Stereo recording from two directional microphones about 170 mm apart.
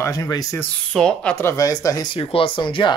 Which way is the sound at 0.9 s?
5° left (ahead or behind).